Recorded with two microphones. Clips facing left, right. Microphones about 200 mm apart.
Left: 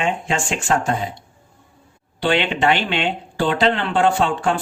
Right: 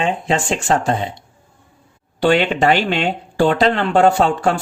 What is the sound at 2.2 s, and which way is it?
A man's voice, 45° right (ahead or behind).